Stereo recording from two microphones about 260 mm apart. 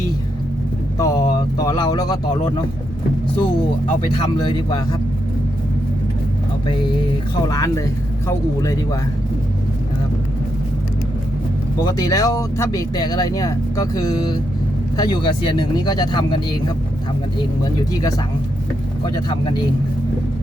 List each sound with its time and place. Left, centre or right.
0.9 s vehicle: centre
4.2 s speech: centre
7.4 s speech: centre
11.8 s speech: centre
19.0 s speech: centre